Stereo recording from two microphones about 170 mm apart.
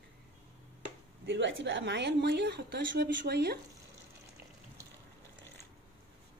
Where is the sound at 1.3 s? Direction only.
90° right; by 3.6 s 70° right (ahead or behind).